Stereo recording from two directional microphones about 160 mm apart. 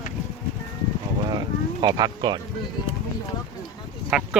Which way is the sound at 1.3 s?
25° right (ahead or behind).